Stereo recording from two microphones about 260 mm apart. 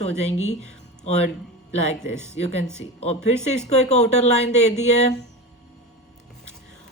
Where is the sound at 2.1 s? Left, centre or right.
Centre.